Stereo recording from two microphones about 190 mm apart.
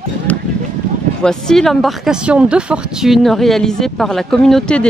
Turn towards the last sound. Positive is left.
turn(degrees=5)  # may be behind; listen again after turning